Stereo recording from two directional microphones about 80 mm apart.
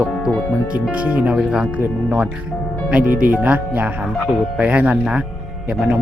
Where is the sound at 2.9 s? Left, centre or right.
Centre.